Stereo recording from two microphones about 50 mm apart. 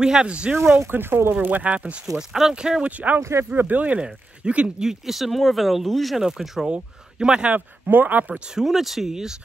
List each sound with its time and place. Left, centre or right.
0.0 s speech: centre
0.7 s speech: right
1.4 s speech: right
2.1 s speech: centre
2.5 s speech: centre
3.2 s speech: right
3.6 s speech: right
7.5 s speech: right
8.5 s speech: centre